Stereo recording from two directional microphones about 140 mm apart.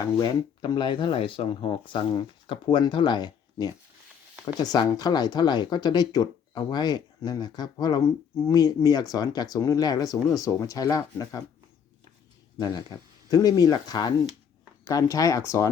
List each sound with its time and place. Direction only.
0.0 s speech: 30° left (ahead or behind)
12.5 s speech: 30° left (ahead or behind)